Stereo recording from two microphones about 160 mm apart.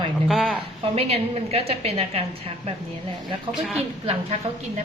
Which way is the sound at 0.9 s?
40° right (ahead or behind).